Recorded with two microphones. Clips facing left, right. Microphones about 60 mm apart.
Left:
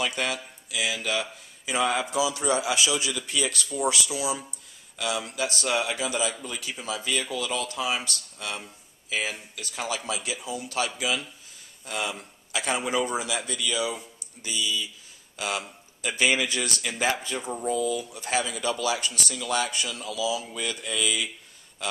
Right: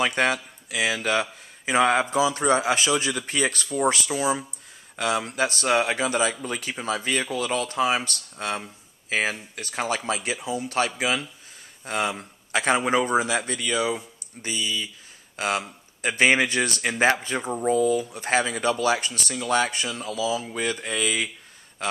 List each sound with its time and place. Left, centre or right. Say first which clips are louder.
0.0 s speech: right 6 dB; right